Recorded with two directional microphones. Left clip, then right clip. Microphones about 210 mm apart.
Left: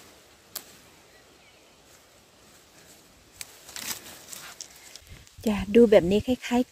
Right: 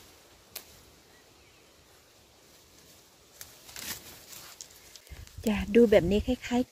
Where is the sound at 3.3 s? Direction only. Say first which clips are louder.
Left 5 dB; 30° left (ahead or behind).